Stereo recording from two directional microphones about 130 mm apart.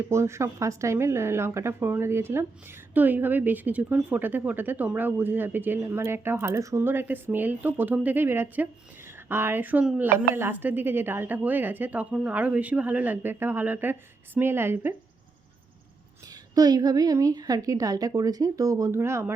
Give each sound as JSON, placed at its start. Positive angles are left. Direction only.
{"t": 0.0, "sound": "a woman's voice", "side_deg": -20}
{"t": 16.2, "sound": "a woman's voice", "side_deg": -30}